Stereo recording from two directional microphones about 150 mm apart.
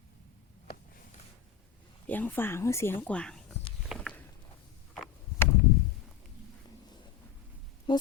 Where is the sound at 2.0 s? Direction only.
10° left (ahead or behind).